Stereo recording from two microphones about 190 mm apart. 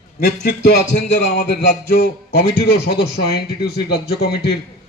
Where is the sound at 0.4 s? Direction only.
60° left (ahead or behind).